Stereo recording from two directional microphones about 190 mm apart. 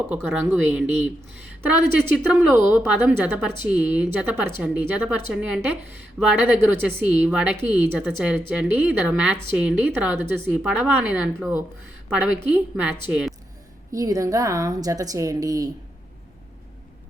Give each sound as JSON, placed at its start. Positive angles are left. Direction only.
{"t": 0.1, "sound": "speech", "side_deg": -10}
{"t": 13.9, "sound": "speech", "side_deg": -15}